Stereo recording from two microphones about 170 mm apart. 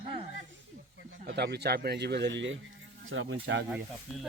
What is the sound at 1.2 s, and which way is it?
Speech, 70° right (ahead or behind).